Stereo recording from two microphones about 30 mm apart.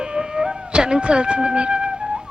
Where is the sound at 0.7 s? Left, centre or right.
Right.